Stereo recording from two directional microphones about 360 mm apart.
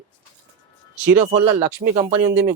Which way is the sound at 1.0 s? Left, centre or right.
Centre.